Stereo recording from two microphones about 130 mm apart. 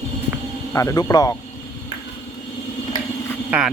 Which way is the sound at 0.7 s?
25° left (ahead or behind).